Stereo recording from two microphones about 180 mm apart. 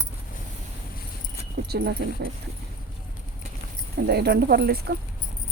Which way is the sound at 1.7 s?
65° right (ahead or behind).